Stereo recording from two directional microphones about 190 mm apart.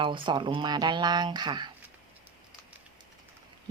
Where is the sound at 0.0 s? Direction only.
25° right (ahead or behind).